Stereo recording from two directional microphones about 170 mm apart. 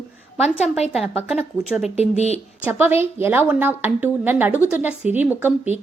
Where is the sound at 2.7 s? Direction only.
10° right (ahead or behind).